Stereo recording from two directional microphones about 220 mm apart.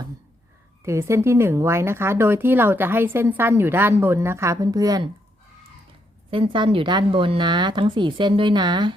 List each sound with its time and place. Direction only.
0.9 s speech: 10° right (ahead or behind)
6.3 s speech: 20° right (ahead or behind)